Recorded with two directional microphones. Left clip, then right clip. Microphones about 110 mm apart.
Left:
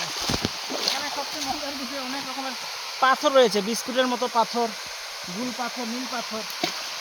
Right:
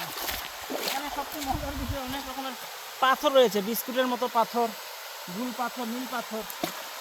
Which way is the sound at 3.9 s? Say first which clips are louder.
Left 3 dB; 55° left (ahead or behind).